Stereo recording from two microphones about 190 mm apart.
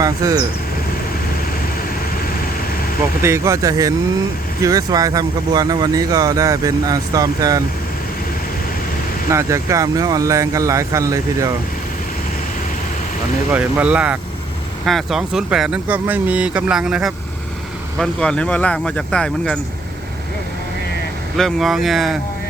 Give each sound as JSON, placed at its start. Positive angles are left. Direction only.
{"t": 0.0, "sound": "speech", "side_deg": -20}
{"t": 3.2, "sound": "speech", "side_deg": -15}
{"t": 9.3, "sound": "speech", "side_deg": -15}
{"t": 13.5, "sound": "speech", "side_deg": -5}
{"t": 21.3, "sound": "speech", "side_deg": 0}